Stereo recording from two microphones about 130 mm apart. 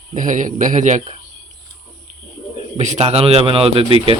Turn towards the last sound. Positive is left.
turn(degrees=-45)  # may be behind; listen again after turning